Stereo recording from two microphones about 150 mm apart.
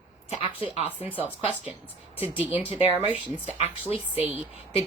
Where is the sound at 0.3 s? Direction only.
40° left (ahead or behind).